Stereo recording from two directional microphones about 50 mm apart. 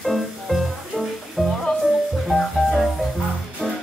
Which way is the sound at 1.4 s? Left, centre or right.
Centre.